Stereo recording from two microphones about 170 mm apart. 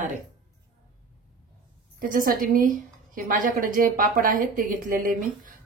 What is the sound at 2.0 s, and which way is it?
A woman's voice, 55° right (ahead or behind).